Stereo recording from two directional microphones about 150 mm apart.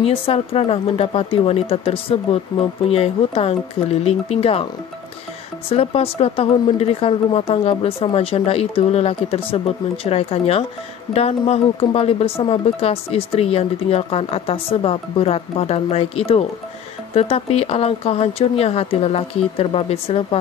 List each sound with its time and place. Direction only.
0.0 s speech: 40° left (ahead or behind)
5.7 s speech: 40° left (ahead or behind)